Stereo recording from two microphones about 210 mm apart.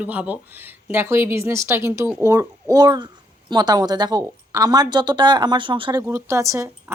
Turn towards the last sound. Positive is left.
turn(degrees=-15)  # may be behind; listen again after turning